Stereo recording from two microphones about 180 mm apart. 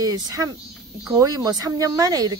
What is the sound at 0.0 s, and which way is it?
Speech, 20° right (ahead or behind).